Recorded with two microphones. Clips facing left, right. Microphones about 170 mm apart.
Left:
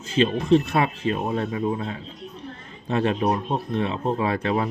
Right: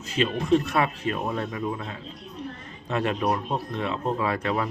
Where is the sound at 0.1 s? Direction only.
30° left (ahead or behind).